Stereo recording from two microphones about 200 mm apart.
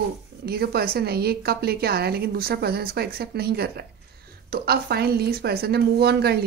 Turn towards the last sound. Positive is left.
turn(degrees=-55)  # may be behind; listen again after turning